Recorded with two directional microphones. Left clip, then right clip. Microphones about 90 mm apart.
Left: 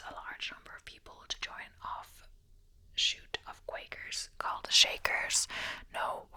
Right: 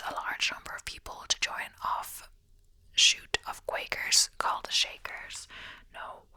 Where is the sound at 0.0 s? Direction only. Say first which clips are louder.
Right 10 dB; 45° right (ahead or behind).